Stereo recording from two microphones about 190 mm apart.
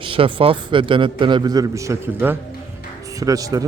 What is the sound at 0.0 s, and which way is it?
A man's voice, 25° right (ahead or behind).